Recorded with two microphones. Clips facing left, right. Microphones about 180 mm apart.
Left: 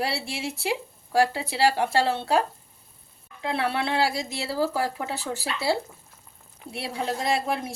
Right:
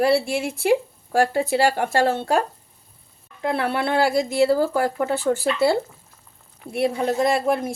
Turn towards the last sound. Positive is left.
turn(degrees=-55)  # may be behind; listen again after turning